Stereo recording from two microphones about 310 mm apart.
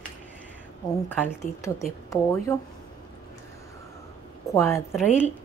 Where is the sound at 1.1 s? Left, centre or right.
Centre.